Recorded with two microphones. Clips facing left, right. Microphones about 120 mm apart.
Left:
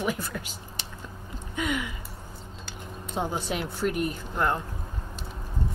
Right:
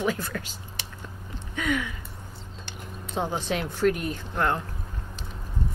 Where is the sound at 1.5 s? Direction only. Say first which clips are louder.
Right 2 dB; 10° left (ahead or behind).